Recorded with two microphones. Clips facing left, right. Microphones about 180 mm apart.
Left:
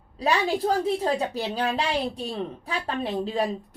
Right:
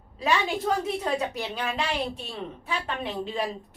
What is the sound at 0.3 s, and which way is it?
Speech, 30° left (ahead or behind).